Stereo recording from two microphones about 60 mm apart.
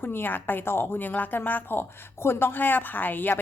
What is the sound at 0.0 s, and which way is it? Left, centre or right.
A woman's voice, left.